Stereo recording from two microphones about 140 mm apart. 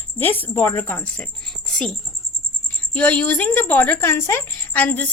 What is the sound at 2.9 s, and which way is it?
Speech, 10° left (ahead or behind).